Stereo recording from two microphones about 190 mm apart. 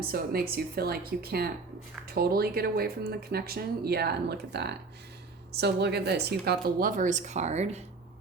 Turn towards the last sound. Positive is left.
turn(degrees=-35)  # may be behind; listen again after turning